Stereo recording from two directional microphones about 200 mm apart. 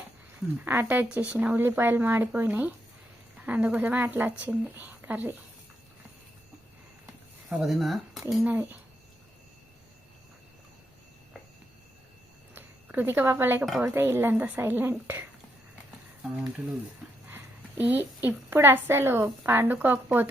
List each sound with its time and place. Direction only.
0.6 s speech: 10° right (ahead or behind)
7.5 s speech: centre (ahead or behind)
12.5 s speech: 10° right (ahead or behind)
16.2 s a woman's voice: centre (ahead or behind)